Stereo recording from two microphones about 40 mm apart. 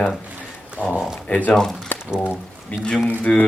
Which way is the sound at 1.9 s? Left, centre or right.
Left.